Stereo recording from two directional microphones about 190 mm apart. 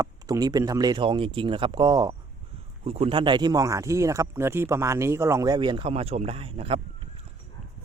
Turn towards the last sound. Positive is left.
turn(degrees=-30)  # may be behind; listen again after turning